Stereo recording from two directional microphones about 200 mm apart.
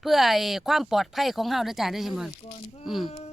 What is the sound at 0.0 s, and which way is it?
Speech, centre (ahead or behind).